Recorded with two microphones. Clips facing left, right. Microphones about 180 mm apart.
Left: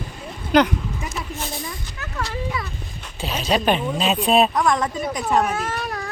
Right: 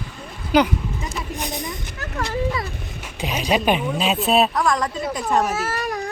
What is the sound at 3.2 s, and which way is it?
Speech, 10° right (ahead or behind).